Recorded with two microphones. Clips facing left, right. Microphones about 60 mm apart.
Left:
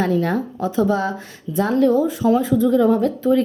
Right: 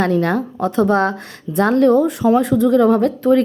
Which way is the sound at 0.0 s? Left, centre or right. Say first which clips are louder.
Right 3 dB; right.